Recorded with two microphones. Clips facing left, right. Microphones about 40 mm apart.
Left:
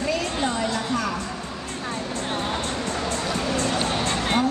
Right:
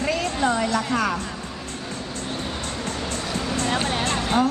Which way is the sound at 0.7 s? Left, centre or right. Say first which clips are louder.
Right 3 dB; right.